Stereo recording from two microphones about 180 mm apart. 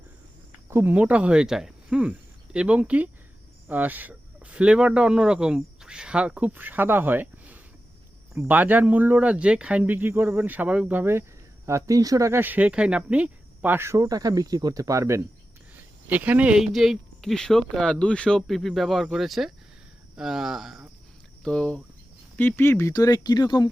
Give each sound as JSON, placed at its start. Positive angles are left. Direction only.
{"t": 0.7, "sound": "speech", "side_deg": -10}